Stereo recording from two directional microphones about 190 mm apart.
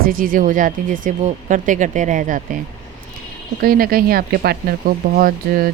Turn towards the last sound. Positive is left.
turn(degrees=-50)  # may be behind; listen again after turning